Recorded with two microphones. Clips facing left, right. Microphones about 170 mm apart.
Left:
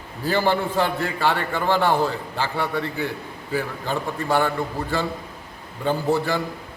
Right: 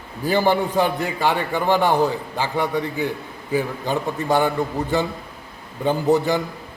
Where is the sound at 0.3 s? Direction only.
15° right (ahead or behind).